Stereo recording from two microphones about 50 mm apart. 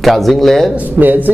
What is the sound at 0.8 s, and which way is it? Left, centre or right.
Speech, right.